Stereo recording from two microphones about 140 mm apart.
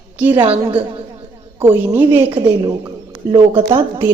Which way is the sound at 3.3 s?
40° right (ahead or behind).